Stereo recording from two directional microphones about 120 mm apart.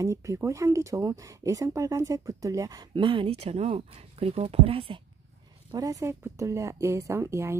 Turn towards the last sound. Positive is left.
turn(degrees=-20)  # may be behind; listen again after turning